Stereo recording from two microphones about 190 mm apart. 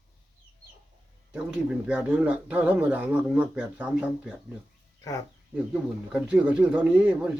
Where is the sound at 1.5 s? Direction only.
5° right (ahead or behind).